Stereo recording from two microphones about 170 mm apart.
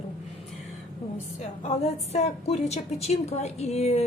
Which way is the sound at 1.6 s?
40° left (ahead or behind).